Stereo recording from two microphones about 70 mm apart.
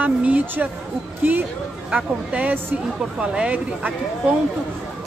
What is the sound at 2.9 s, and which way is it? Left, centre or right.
Speech, centre.